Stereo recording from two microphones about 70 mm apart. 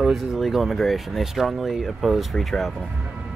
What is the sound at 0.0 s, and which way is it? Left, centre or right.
Speech, centre.